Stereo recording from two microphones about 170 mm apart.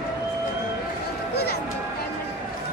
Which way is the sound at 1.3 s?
70° left (ahead or behind).